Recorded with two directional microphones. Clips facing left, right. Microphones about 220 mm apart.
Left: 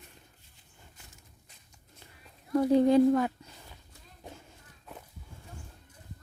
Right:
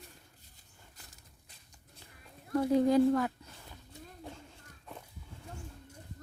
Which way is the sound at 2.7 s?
25° left (ahead or behind).